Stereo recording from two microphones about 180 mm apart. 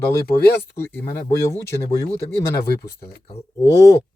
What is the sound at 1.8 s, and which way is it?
Speech, 30° left (ahead or behind).